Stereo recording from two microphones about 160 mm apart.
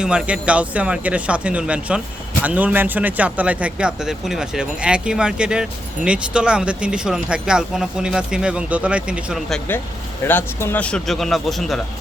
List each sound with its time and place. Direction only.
0.0 s speech: 5° right (ahead or behind)
10.2 s speech: 15° left (ahead or behind)